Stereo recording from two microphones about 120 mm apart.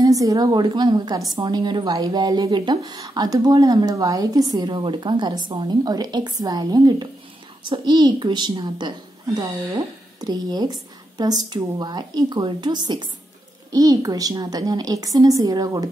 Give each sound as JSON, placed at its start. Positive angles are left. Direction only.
{"t": 0.0, "sound": "a woman's voice", "side_deg": -30}